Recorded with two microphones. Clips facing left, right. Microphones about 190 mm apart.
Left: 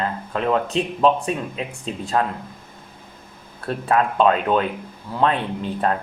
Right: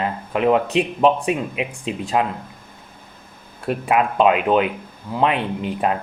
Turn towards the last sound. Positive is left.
turn(degrees=-10)  # may be behind; listen again after turning